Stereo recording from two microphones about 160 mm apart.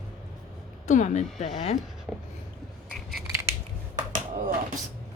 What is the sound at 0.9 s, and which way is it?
Speech, 50° left (ahead or behind).